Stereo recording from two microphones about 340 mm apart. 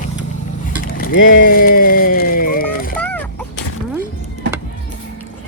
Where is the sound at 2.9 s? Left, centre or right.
Centre.